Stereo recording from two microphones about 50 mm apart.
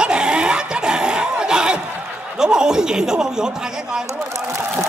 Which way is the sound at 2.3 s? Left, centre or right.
Centre.